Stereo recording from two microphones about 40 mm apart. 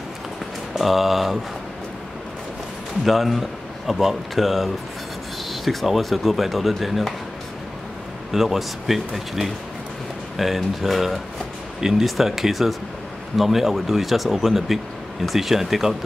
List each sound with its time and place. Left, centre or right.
0.7 s speech: centre
3.1 s speech: centre
8.3 s speech: centre